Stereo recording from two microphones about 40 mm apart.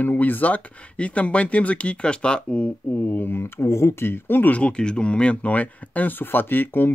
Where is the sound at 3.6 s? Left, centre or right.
Left.